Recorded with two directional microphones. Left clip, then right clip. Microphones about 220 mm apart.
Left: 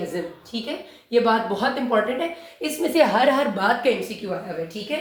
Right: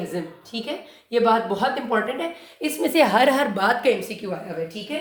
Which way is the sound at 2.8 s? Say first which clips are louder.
Even; 50° right (ahead or behind).